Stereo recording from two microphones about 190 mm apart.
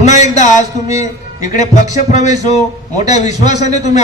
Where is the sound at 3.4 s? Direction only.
35° left (ahead or behind).